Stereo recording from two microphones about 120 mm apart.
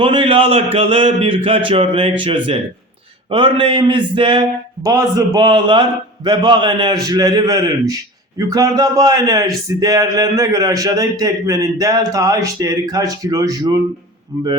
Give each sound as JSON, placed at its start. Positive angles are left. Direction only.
{"t": 0.0, "sound": "speech", "side_deg": -50}
{"t": 3.2, "sound": "speech", "side_deg": -45}
{"t": 4.8, "sound": "a man's voice", "side_deg": -25}
{"t": 5.4, "sound": "a man's voice", "side_deg": -40}